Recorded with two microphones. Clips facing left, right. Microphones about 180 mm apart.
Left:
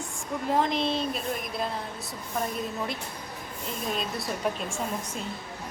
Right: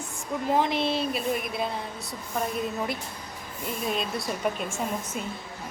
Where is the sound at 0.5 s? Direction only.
5° right (ahead or behind).